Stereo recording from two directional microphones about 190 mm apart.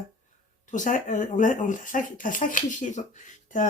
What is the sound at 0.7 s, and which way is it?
Speech, 40° left (ahead or behind).